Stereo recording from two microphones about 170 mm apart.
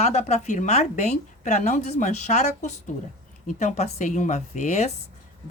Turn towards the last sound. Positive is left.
turn(degrees=40)  # may be behind; listen again after turning